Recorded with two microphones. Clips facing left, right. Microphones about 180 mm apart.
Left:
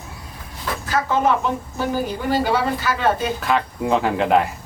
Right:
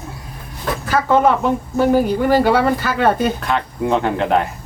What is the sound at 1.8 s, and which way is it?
A woman's voice, 60° right (ahead or behind).